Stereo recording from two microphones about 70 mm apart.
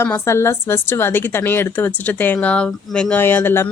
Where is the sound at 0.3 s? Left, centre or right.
Left; by 3.2 s centre.